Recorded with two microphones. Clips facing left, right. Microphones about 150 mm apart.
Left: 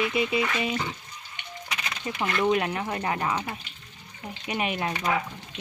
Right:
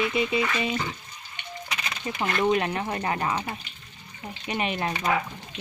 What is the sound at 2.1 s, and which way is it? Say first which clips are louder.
Speech: right 1 dB; centre (ahead or behind).